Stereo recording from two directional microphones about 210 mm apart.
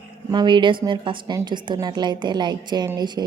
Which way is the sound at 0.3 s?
20° right (ahead or behind).